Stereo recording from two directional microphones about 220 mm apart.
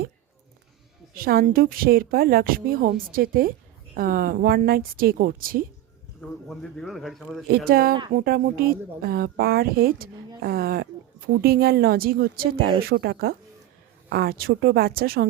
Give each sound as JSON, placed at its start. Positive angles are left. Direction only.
{"t": 1.1, "sound": "a woman's voice", "side_deg": -40}
{"t": 6.2, "sound": "a man's voice", "side_deg": 0}
{"t": 7.5, "sound": "speech", "side_deg": -45}